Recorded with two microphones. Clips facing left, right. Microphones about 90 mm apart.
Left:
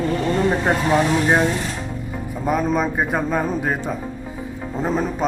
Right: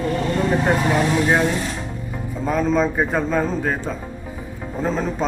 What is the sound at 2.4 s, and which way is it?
Speech, 10° left (ahead or behind).